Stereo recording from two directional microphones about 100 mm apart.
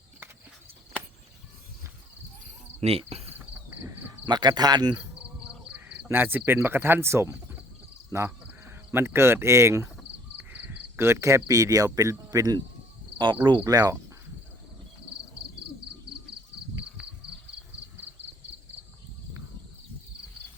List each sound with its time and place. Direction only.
2.8 s cricket: 90° right
4.3 s speech: 45° right (ahead or behind)
6.1 s speech: 20° right (ahead or behind); by 12.6 s 35° right (ahead or behind)
13.1 s speech: 50° right (ahead or behind)
13.7 s speech: 40° right (ahead or behind)
17.0 s insect: 5° right (ahead or behind)